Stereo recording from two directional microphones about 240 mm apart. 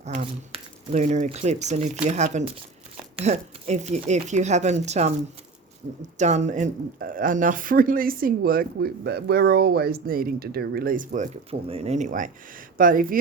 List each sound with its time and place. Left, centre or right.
0.0 s speech: right
6.1 s speech: right